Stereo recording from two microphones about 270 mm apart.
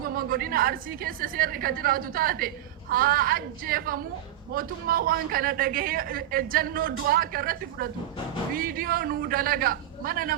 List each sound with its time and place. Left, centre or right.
0.2 s a man's voice: right